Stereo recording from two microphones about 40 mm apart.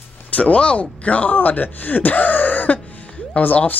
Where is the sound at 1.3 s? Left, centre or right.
Left.